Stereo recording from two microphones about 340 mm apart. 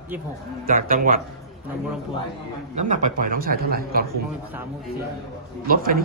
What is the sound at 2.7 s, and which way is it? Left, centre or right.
A man's voice, right.